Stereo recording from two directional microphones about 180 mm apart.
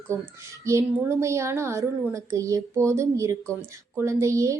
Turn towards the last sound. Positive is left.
turn(degrees=-15)  # may be behind; listen again after turning